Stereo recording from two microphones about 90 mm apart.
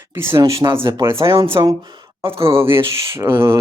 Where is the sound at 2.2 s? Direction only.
90° right.